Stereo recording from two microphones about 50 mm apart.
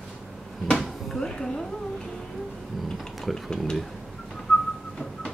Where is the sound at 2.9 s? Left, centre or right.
Centre.